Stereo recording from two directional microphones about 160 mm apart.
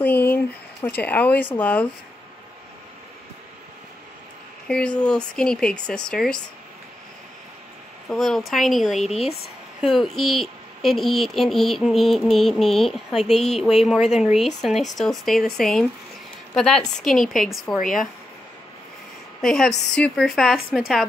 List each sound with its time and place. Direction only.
0.0 s a sound: 10° left (ahead or behind)
0.8 s speech: 10° left (ahead or behind)
4.6 s speech: 5° left (ahead or behind)
8.1 s speech: centre (ahead or behind)
9.0 s speech: 40° left (ahead or behind)
9.8 s speech: centre (ahead or behind)
19.4 s speech: 5° left (ahead or behind)